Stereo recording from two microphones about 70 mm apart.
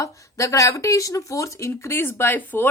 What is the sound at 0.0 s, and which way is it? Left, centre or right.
Speech, left.